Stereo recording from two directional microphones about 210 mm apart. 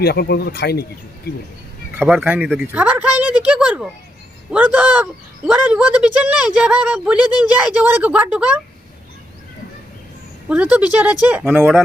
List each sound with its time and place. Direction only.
0.0 s speech: 50° left (ahead or behind)
2.0 s a woman's voice: 5° right (ahead or behind)
10.5 s speech: 5° right (ahead or behind)